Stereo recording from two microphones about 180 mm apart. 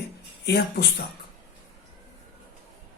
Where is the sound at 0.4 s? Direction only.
65° left (ahead or behind).